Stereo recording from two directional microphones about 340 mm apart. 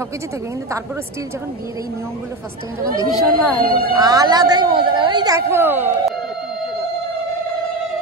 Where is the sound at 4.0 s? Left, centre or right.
Centre.